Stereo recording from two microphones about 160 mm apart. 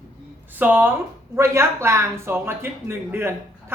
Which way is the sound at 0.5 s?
10° right (ahead or behind).